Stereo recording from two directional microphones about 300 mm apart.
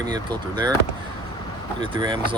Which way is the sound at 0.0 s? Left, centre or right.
Centre.